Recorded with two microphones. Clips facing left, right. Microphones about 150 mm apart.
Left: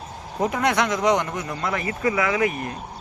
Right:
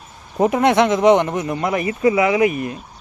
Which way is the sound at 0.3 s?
25° right (ahead or behind).